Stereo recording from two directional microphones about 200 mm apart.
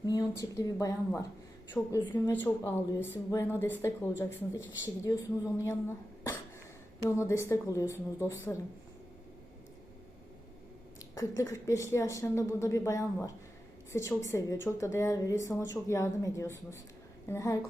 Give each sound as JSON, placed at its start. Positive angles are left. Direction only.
{"t": 0.0, "sound": "a woman's voice", "side_deg": 20}
{"t": 11.1, "sound": "a woman's voice", "side_deg": 15}